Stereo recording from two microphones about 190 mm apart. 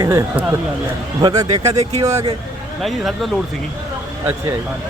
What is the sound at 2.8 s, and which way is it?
Speech, centre (ahead or behind).